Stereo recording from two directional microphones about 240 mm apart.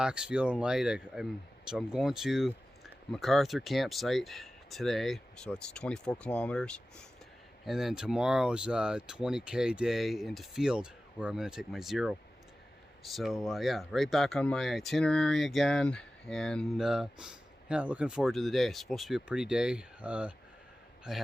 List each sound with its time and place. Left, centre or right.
0.0 s speech: centre